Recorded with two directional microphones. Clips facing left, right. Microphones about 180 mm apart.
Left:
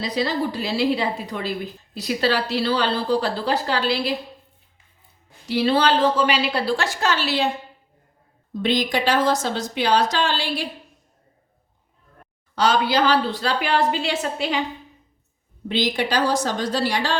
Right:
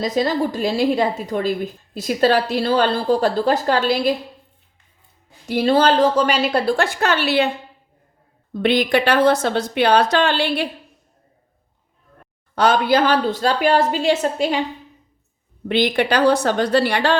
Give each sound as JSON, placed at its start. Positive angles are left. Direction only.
{"t": 0.0, "sound": "a woman's voice", "side_deg": -45}
{"t": 5.5, "sound": "a woman's voice", "side_deg": -45}
{"t": 8.5, "sound": "a woman's voice", "side_deg": -60}
{"t": 12.5, "sound": "a woman's voice", "side_deg": -55}
{"t": 15.7, "sound": "a woman's voice", "side_deg": -60}